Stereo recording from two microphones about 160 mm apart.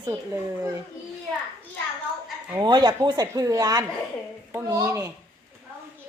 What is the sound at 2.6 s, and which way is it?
Speech, 25° right (ahead or behind).